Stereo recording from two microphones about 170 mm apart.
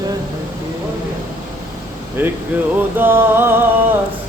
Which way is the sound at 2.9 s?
10° right (ahead or behind).